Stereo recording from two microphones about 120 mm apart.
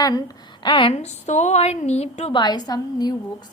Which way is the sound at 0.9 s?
70° left (ahead or behind).